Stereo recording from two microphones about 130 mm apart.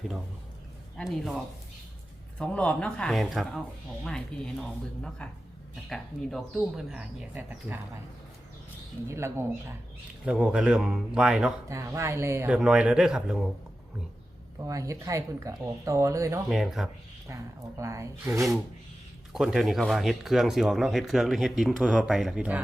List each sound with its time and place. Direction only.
0.9 s speech: centre (ahead or behind)
2.4 s speech: 10° left (ahead or behind)
9.0 s speech: 20° right (ahead or behind)
10.2 s speech: 10° right (ahead or behind)
11.7 s speech: 25° right (ahead or behind)
12.5 s speech: 5° right (ahead or behind)
14.6 s speech: 25° right (ahead or behind)
16.5 s speech: centre (ahead or behind)
17.2 s speech: 25° right (ahead or behind)
19.3 s speech: 5° right (ahead or behind)